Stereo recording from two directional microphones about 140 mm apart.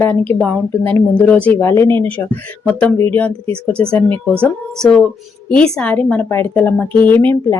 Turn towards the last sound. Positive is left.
turn(degrees=15)  # may be behind; listen again after turning